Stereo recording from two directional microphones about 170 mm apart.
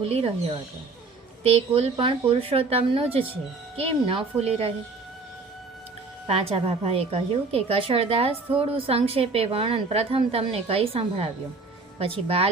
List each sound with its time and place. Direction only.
0.0 s a woman's voice: 35° right (ahead or behind)
1.5 s a woman's voice: 35° right (ahead or behind)
6.2 s a woman's voice: 35° right (ahead or behind)